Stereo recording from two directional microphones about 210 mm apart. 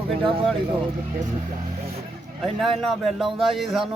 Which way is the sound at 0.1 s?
25° right (ahead or behind).